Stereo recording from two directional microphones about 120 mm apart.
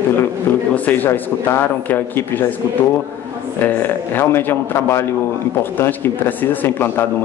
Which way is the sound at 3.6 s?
20° left (ahead or behind).